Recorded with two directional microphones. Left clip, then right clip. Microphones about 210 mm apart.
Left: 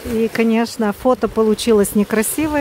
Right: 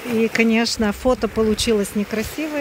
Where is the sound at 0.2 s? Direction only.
20° left (ahead or behind).